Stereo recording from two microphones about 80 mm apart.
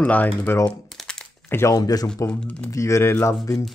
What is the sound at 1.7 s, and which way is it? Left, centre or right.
Speech, left.